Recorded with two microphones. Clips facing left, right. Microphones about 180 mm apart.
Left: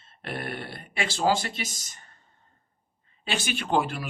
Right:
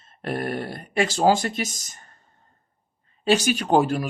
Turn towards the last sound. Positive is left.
turn(degrees=-45)  # may be behind; listen again after turning